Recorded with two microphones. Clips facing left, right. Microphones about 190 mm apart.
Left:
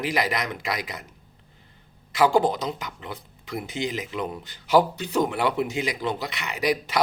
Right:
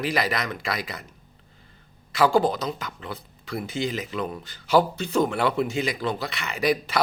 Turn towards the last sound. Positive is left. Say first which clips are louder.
# right 1 dB
turn(degrees=15)  # may be behind; listen again after turning